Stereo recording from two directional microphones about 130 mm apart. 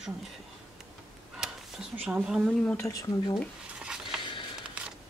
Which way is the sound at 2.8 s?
25° left (ahead or behind).